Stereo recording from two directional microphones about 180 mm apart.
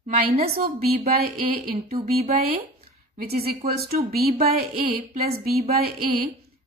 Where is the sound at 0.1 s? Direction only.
40° right (ahead or behind).